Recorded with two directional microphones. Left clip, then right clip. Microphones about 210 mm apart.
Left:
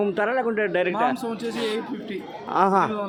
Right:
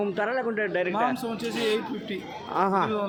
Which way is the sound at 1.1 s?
Centre (ahead or behind).